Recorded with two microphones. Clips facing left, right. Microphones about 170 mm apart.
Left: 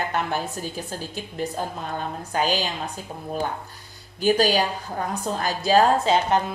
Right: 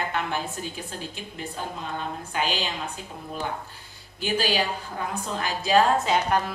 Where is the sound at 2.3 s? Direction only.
40° left (ahead or behind).